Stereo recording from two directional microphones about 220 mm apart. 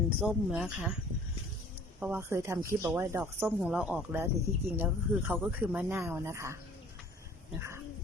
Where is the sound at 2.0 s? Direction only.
10° right (ahead or behind).